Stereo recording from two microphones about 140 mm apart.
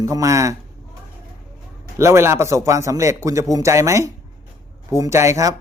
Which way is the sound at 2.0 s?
20° right (ahead or behind).